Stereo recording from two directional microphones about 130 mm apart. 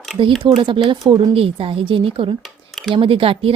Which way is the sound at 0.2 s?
45° right (ahead or behind).